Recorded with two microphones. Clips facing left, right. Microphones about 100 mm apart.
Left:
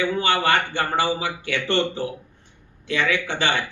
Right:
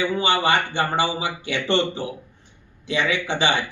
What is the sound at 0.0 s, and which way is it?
A man's voice, 20° right (ahead or behind).